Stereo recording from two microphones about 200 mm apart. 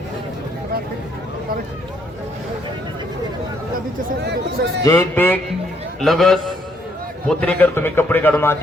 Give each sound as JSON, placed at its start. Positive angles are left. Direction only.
{"t": 4.2, "sound": "speech", "side_deg": -55}
{"t": 4.9, "sound": "a man's voice", "side_deg": 10}